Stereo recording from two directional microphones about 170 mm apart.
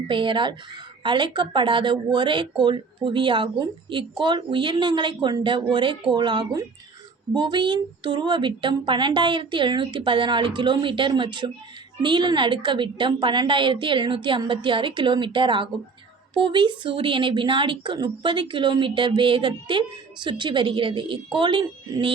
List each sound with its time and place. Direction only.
0.1 s speech: 30° right (ahead or behind)